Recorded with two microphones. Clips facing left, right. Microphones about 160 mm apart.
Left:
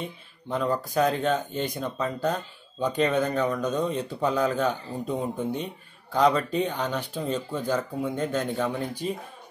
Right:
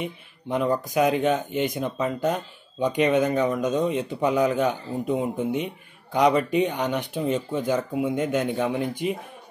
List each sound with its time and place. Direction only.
0.0 s speech: 15° right (ahead or behind)